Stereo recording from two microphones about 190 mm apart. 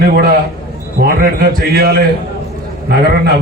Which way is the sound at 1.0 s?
50° right (ahead or behind).